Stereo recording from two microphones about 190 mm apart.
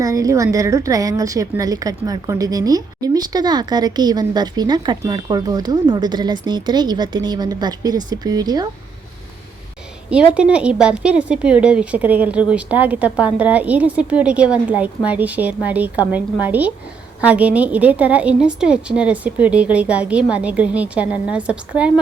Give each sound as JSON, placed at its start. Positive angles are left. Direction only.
{"t": 0.0, "sound": "a woman's voice", "side_deg": -20}
{"t": 10.1, "sound": "a woman's voice", "side_deg": -5}